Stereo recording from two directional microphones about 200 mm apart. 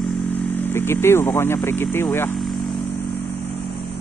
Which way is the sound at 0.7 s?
10° left (ahead or behind).